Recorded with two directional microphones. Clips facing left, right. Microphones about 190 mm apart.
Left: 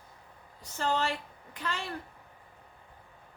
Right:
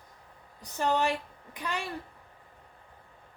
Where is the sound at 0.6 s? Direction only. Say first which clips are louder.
Right 3 dB; 15° right (ahead or behind).